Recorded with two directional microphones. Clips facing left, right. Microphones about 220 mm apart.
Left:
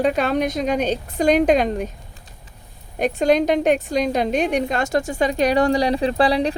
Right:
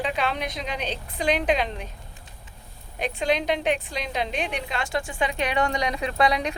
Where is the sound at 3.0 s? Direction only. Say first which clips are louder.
Left 8 dB; 45° left (ahead or behind).